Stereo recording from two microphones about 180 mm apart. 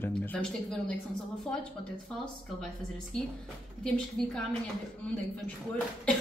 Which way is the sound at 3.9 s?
5° left (ahead or behind).